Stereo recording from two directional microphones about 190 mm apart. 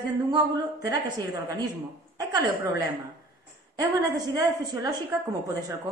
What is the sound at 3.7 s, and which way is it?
A woman's voice, 20° right (ahead or behind).